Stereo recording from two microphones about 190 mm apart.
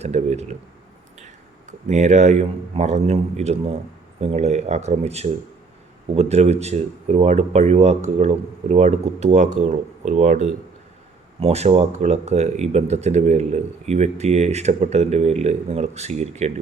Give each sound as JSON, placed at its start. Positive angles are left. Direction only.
{"t": 0.0, "sound": "speech", "side_deg": -35}
{"t": 1.9, "sound": "speech", "side_deg": -40}